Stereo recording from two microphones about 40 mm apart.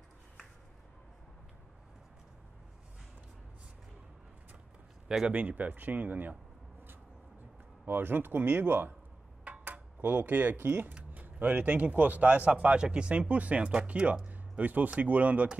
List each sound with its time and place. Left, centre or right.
5.0 s a sound: right
5.3 s speech: right
7.8 s speech: right
14.6 s speech: right